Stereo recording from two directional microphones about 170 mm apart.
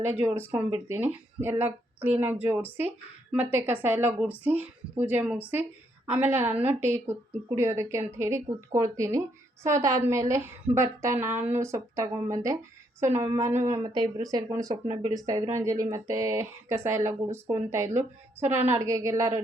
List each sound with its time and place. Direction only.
0.2 s a woman's voice: 15° right (ahead or behind)
14.8 s speech: 35° right (ahead or behind)
15.1 s a woman's voice: 20° right (ahead or behind)